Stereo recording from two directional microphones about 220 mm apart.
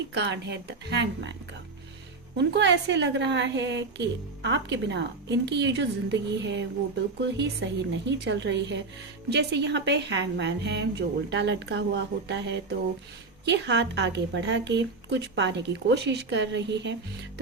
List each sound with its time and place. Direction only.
0.1 s a woman's voice: 50° right (ahead or behind)
2.4 s a woman's voice: 50° right (ahead or behind)